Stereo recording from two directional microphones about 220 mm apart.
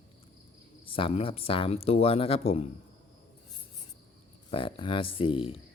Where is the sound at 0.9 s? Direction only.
25° left (ahead or behind).